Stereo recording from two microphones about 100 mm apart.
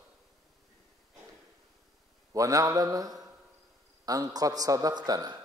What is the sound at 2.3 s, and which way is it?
A man's voice, 35° right (ahead or behind).